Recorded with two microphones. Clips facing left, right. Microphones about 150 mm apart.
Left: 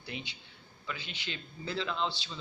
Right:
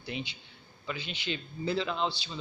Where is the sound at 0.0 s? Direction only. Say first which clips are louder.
Right 5 dB; 20° right (ahead or behind).